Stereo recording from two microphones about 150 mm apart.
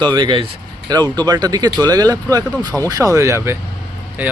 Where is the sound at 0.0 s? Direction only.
30° right (ahead or behind).